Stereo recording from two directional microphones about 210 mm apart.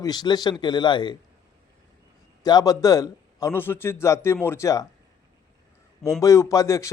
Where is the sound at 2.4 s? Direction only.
20° left (ahead or behind).